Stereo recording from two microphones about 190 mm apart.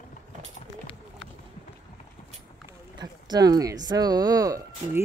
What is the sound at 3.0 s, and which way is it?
Speech, 20° right (ahead or behind).